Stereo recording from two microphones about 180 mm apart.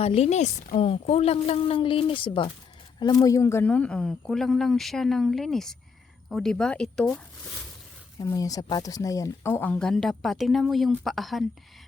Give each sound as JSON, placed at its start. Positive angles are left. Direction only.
{"t": 0.0, "sound": "a woman's voice", "side_deg": 35}
{"t": 8.2, "sound": "speech", "side_deg": 20}